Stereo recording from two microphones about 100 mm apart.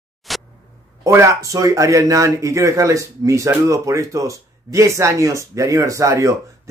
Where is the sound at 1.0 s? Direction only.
30° right (ahead or behind).